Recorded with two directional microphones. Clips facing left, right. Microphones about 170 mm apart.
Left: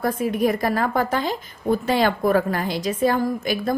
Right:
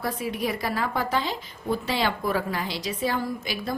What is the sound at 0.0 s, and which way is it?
A woman's voice, 50° left (ahead or behind).